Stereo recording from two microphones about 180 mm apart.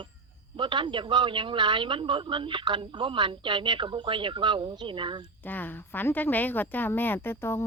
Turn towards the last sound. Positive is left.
turn(degrees=15)  # may be behind; listen again after turning